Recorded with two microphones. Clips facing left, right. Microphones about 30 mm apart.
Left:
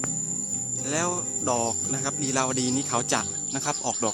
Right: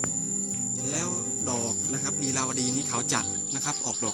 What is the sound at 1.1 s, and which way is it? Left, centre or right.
Speech, centre.